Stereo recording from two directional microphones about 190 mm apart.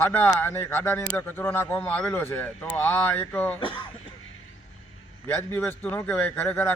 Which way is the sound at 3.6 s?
25° left (ahead or behind).